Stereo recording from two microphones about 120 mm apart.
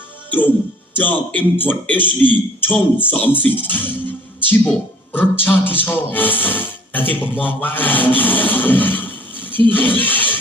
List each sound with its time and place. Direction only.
0.3 s speech: 15° left (ahead or behind)